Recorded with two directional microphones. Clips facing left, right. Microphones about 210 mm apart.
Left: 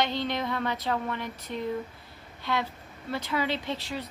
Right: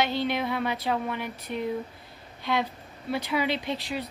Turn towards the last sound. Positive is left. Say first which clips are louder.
# right 2 dB
turn(degrees=-15)  # may be behind; listen again after turning